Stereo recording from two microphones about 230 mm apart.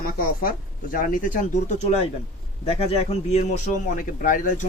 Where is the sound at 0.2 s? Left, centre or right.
Left.